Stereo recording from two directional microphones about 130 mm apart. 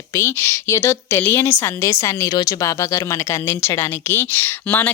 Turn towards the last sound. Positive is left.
turn(degrees=15)  # may be behind; listen again after turning